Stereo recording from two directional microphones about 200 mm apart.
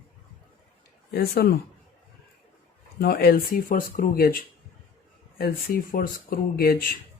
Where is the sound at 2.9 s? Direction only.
50° left (ahead or behind).